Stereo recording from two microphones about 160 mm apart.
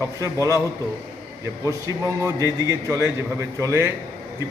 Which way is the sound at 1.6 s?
20° right (ahead or behind).